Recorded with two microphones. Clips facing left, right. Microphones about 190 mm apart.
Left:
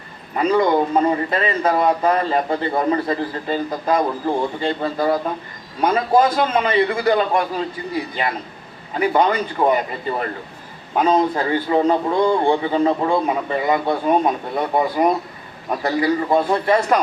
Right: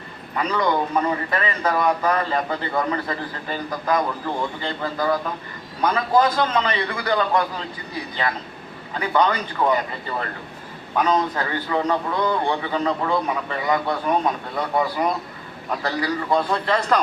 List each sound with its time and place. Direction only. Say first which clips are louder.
0.3 s a man's voice: left 6 dB; 25° left (ahead or behind)
9.0 s a man's voice: left 4 dB; 25° left (ahead or behind)